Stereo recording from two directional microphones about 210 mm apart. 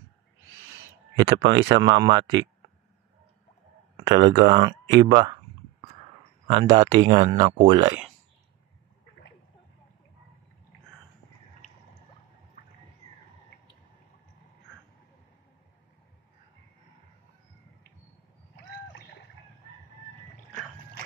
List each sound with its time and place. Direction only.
1.4 s speech: 60° right (ahead or behind)
1.7 s speech: 20° right (ahead or behind)
3.9 s a sound: 20° right (ahead or behind)
6.4 s speech: 20° right (ahead or behind)